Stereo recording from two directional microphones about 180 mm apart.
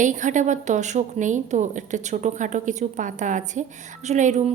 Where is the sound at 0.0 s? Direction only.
45° right (ahead or behind).